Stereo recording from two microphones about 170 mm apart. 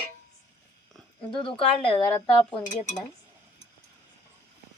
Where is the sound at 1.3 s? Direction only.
30° left (ahead or behind).